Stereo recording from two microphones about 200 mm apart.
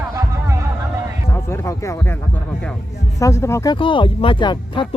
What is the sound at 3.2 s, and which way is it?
Speech, 15° left (ahead or behind).